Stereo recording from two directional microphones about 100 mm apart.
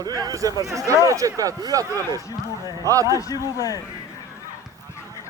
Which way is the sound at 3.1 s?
35° left (ahead or behind).